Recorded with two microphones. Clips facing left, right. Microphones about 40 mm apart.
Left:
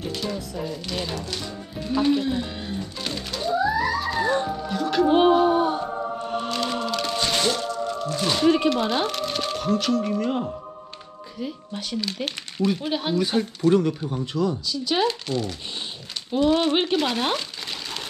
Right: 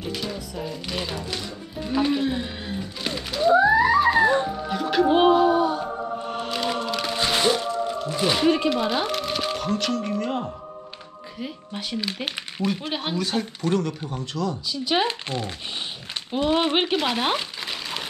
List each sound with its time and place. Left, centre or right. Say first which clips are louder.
0.8 s speech: even; centre
3.5 s theremin: right 5 dB; right
4.6 s music: even; centre
5.2 s a sound: right 1 dB; right
6.3 s music: left 1 dB; centre
8.6 s speech: left 1 dB; centre
11.3 s speech: left 2 dB; centre
13.7 s speech: left 4 dB; centre
14.7 s speech: even; centre